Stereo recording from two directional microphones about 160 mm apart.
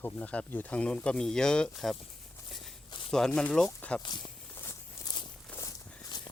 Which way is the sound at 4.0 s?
30° left (ahead or behind).